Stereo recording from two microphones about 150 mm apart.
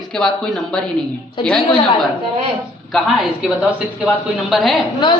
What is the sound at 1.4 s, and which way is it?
Speech, 30° left (ahead or behind).